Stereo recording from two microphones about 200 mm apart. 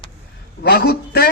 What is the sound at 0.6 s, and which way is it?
Speech, 55° left (ahead or behind).